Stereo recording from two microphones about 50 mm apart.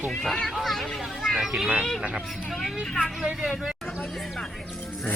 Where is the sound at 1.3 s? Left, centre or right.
Centre.